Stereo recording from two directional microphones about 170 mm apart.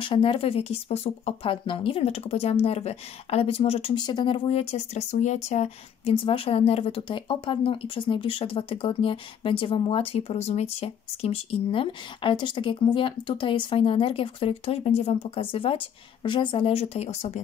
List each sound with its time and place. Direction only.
0.0 s speech: 30° left (ahead or behind)